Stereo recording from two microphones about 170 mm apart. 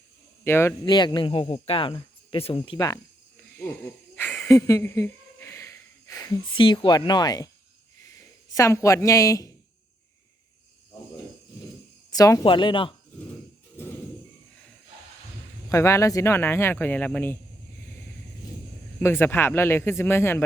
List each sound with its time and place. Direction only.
0.4 s speech: 15° left (ahead or behind)
0.9 s speech: 25° left (ahead or behind)
3.5 s speech: 15° left (ahead or behind)
12.1 s speech: 20° left (ahead or behind)
15.7 s speech: 15° left (ahead or behind)
18.9 s speech: 15° left (ahead or behind)